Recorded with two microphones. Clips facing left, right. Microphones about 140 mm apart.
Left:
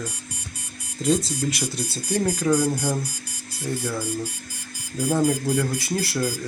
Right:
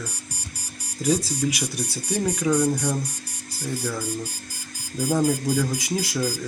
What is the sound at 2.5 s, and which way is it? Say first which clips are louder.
Speech: right 1 dB; 5° left (ahead or behind).